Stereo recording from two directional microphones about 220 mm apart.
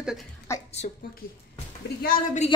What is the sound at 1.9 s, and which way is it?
Speech, 40° left (ahead or behind).